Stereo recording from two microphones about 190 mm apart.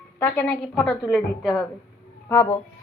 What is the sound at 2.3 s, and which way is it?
Speech, 15° left (ahead or behind).